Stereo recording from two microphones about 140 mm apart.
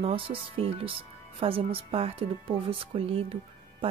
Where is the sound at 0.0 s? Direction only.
40° right (ahead or behind).